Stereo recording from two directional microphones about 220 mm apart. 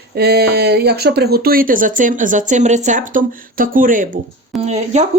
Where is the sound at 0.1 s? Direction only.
45° right (ahead or behind).